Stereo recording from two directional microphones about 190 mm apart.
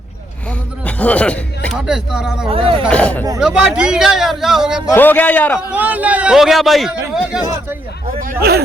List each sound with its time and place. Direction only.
0.9 s a man's voice: 5° left (ahead or behind)
2.5 s speech: 30° right (ahead or behind)
2.9 s a man's voice: 5° left (ahead or behind)
4.9 s a man's voice: 10° left (ahead or behind)
5.7 s a man's voice: 10° right (ahead or behind)
7.4 s speech: 15° right (ahead or behind)
8.2 s speech: 50° right (ahead or behind)